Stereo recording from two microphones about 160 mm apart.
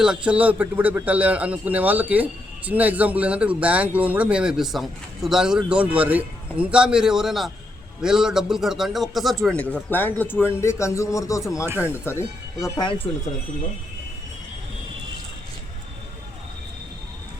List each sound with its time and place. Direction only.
0.0 s a man's voice: 5° right (ahead or behind); by 12.9 s 20° left (ahead or behind)
12.9 s speech: 35° left (ahead or behind)